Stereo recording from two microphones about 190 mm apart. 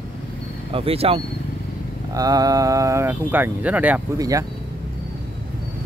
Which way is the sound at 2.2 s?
20° right (ahead or behind).